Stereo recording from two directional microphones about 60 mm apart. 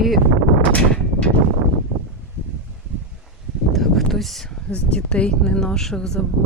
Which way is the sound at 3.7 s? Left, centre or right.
Centre.